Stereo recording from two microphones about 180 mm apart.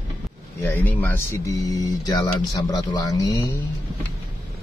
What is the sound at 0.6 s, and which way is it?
Speech, 10° left (ahead or behind).